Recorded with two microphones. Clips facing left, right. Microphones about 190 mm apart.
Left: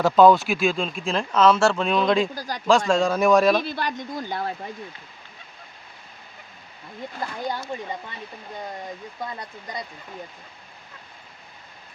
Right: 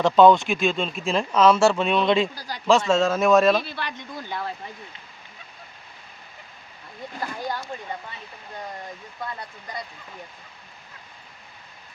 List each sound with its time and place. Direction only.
0.0 s speech: 5° left (ahead or behind)
2.3 s speech: 45° left (ahead or behind)
2.6 s speech: 5° right (ahead or behind)
3.6 s speech: 45° left (ahead or behind)
7.4 s speech: 15° left (ahead or behind)